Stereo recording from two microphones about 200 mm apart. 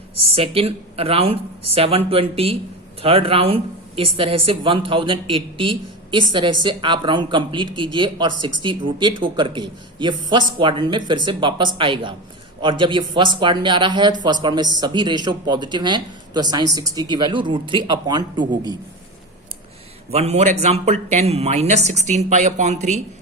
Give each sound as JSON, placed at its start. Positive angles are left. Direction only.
{"t": 0.3, "sound": "speech", "side_deg": -30}
{"t": 20.1, "sound": "a man's voice", "side_deg": -30}